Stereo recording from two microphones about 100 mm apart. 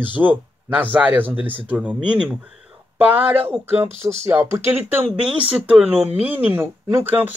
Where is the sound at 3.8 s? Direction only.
30° right (ahead or behind).